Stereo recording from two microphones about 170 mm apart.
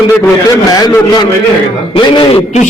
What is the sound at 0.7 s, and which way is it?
A man's voice, 20° left (ahead or behind).